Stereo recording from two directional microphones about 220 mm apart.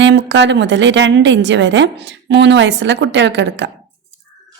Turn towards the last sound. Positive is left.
turn(degrees=-55)  # may be behind; listen again after turning